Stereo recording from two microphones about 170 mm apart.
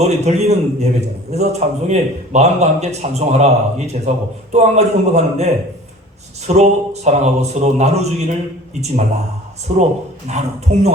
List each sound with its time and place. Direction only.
0.0 s a man's voice: 40° right (ahead or behind)
6.5 s a man's voice: 40° right (ahead or behind)
9.7 s a man's voice: 45° right (ahead or behind)